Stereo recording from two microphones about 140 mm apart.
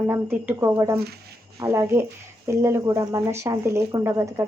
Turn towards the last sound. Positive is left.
turn(degrees=-20)  # may be behind; listen again after turning